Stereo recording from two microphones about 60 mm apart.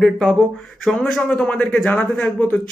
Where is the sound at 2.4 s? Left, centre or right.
Left.